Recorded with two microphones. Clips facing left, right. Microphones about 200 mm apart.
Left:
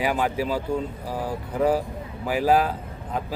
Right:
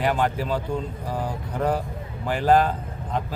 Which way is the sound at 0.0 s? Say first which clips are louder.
Even; 5° left (ahead or behind).